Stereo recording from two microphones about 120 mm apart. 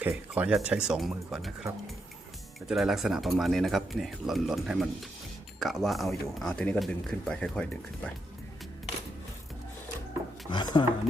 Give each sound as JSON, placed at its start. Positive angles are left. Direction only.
{"t": 0.0, "sound": "speech", "side_deg": -15}
{"t": 10.5, "sound": "speech", "side_deg": 40}